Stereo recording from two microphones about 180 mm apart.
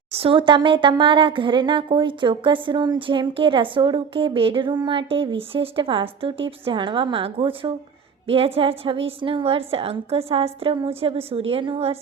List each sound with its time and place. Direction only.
0.1 s a woman's voice: 30° right (ahead or behind)